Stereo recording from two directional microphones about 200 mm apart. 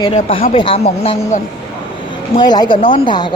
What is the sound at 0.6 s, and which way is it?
Speech, 25° left (ahead or behind).